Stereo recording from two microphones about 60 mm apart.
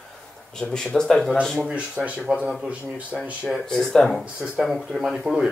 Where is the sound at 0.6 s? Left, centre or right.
Centre.